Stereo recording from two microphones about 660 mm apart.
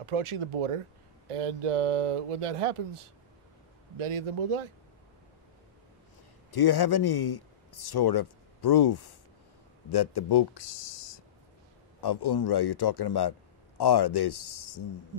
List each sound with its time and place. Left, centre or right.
0.0 s speech: right
6.5 s a man's voice: left